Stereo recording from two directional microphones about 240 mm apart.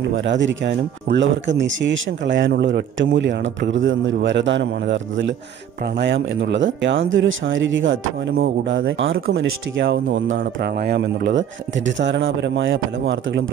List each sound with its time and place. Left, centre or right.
0.0 s speech: right